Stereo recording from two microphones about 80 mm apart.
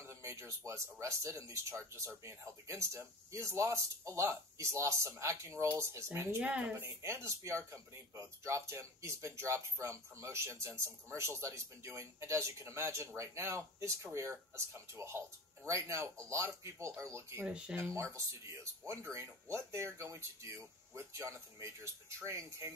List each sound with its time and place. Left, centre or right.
0.0 s speech: right
6.4 s speech: centre
6.7 s speech: right
17.5 s speech: centre
17.7 s speech: right